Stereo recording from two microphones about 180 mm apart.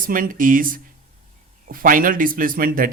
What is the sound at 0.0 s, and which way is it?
Speech, 50° right (ahead or behind).